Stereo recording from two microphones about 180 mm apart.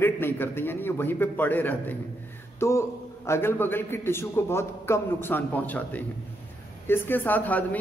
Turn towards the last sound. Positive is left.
turn(degrees=10)  # may be behind; listen again after turning